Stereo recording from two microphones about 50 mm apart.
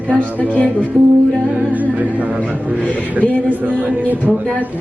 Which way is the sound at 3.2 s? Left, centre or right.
Left.